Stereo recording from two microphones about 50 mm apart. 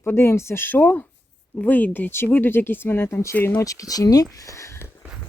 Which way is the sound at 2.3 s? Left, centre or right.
Left.